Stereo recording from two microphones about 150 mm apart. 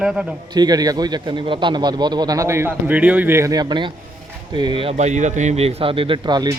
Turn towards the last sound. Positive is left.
turn(degrees=-30)  # may be behind; listen again after turning